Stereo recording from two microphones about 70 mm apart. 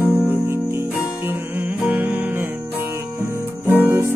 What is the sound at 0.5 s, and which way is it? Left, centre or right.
Music, right.